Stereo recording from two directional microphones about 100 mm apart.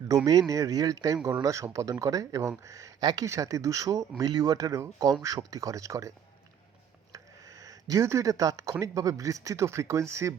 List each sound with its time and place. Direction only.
0.3 s speech: 35° right (ahead or behind)